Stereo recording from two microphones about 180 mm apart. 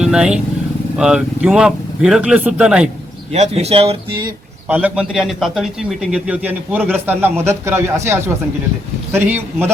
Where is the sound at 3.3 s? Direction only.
35° right (ahead or behind).